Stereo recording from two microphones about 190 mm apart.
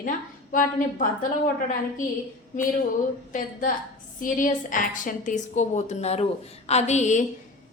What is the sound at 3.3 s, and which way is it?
A woman's voice, 45° left (ahead or behind).